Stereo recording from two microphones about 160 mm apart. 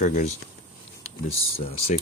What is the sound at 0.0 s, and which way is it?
Speech, 50° left (ahead or behind).